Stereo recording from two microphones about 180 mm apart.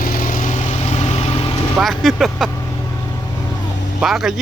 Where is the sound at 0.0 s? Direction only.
50° left (ahead or behind); by 1.5 s 35° left (ahead or behind).